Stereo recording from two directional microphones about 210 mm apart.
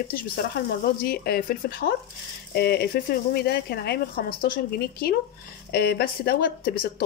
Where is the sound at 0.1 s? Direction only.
45° left (ahead or behind).